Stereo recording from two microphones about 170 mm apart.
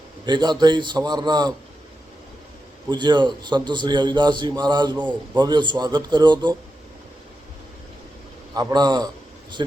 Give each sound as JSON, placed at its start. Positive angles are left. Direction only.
{"t": 0.3, "sound": "a man's voice", "side_deg": -25}
{"t": 2.9, "sound": "a man's voice", "side_deg": -25}
{"t": 8.5, "sound": "a man's voice", "side_deg": -25}